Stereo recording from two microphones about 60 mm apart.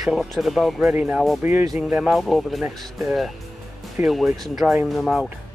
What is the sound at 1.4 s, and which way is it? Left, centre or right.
Speech, right.